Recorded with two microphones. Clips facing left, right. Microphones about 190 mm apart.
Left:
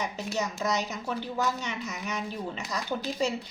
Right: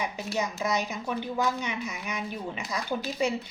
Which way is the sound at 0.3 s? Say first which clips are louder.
Right 1 dB; 10° right (ahead or behind).